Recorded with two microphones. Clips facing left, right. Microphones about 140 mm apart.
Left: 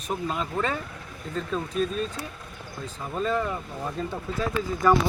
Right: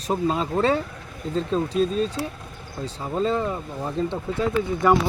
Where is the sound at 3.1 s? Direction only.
25° right (ahead or behind).